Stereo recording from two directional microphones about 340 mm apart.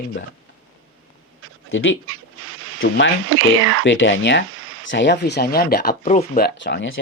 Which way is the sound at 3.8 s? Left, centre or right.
Left.